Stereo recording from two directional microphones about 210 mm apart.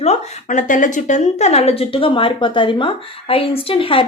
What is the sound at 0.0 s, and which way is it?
Speech, 30° left (ahead or behind).